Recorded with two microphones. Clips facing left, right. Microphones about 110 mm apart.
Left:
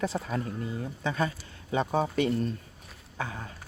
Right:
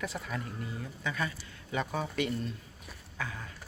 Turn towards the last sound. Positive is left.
turn(degrees=30)  # may be behind; listen again after turning